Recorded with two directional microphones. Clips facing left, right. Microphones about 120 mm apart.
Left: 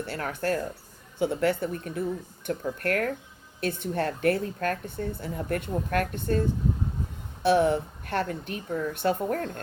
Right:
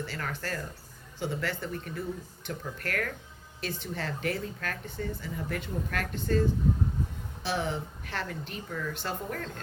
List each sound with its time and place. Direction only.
0.0 s speech: 55° left (ahead or behind)
7.4 s speech: 55° left (ahead or behind)